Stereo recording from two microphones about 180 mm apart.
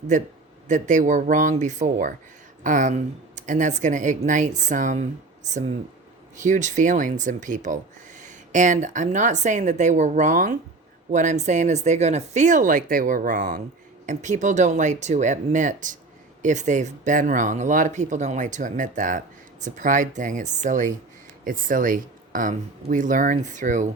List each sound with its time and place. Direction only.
0.1 s speech: 45° right (ahead or behind)